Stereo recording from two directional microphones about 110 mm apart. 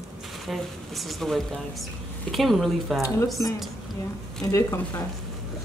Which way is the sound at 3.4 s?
25° left (ahead or behind).